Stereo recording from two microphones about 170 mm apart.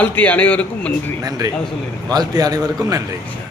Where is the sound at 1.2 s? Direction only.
20° right (ahead or behind).